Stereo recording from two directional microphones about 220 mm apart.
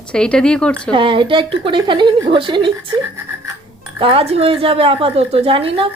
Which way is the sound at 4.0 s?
25° right (ahead or behind).